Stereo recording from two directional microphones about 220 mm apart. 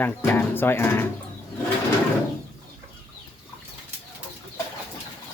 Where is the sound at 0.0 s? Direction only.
10° left (ahead or behind).